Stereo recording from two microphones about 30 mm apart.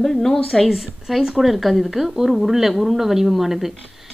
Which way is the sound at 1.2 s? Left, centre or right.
Centre.